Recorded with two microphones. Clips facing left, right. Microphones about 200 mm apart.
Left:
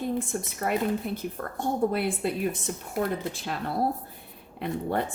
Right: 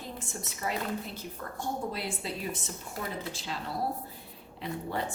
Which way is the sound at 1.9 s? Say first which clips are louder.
Left 9 dB; 55° left (ahead or behind).